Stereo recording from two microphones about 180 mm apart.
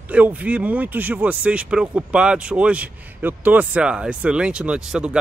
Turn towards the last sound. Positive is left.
turn(degrees=-5)  # may be behind; listen again after turning